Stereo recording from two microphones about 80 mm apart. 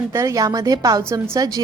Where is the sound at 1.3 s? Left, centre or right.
Right.